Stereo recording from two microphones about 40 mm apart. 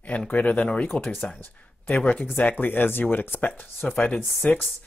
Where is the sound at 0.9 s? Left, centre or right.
Left.